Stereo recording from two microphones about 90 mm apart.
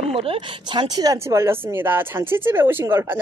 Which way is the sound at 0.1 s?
90° right.